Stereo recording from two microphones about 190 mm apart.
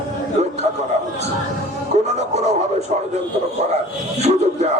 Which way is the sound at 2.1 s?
35° right (ahead or behind).